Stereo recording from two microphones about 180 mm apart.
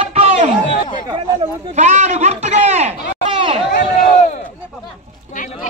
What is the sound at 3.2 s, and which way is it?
Chatter, 30° right (ahead or behind).